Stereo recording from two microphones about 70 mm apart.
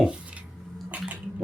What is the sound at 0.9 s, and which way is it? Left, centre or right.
Bathtub, centre.